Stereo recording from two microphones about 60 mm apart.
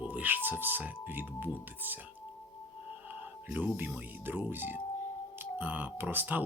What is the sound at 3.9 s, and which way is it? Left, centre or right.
Speech, right.